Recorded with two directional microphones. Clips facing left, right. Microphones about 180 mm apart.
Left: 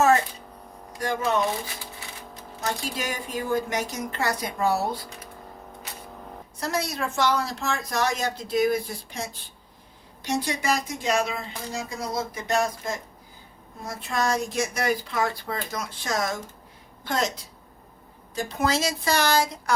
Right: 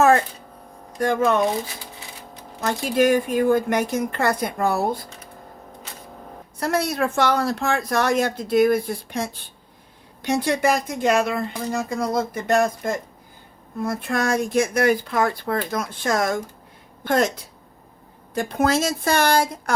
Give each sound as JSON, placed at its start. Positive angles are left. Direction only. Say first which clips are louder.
{"t": 0.9, "sound": "a woman's voice", "louder": "right 6 dB", "side_deg": -55}
{"t": 2.6, "sound": "speech", "louder": "right 10 dB", "side_deg": -55}
{"t": 6.6, "sound": "a woman's voice", "louder": "right 6 dB", "side_deg": -60}